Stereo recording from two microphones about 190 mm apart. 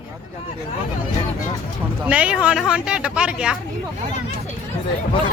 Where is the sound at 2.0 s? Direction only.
5° right (ahead or behind).